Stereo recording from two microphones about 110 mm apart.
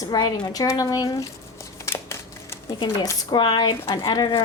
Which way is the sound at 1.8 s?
25° left (ahead or behind).